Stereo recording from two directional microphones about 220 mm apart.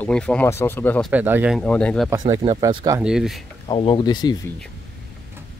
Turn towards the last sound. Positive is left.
turn(degrees=20)  # may be behind; listen again after turning